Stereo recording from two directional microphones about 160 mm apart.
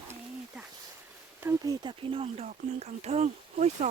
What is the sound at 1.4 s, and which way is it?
Speech, 20° right (ahead or behind).